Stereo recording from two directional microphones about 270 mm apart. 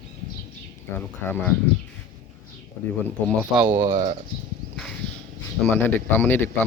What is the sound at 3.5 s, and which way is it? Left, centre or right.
Speech, centre.